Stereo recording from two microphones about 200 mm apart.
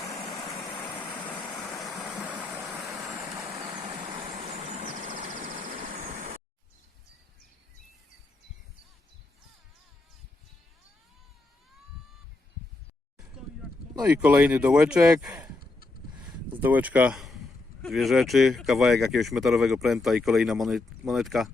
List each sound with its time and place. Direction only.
0.0 s vehicle: centre (ahead or behind)
2.2 s stream: 5° right (ahead or behind)
4.3 s vehicle: 35° right (ahead or behind)
14.0 s speech: 5° right (ahead or behind)
16.6 s speech: 10° right (ahead or behind)